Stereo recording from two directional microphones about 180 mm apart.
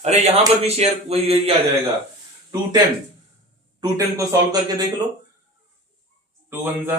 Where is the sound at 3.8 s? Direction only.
20° right (ahead or behind).